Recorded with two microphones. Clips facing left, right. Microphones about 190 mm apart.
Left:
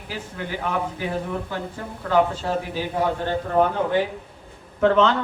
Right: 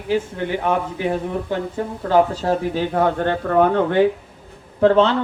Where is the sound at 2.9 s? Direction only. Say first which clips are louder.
Right 3 dB; 55° right (ahead or behind).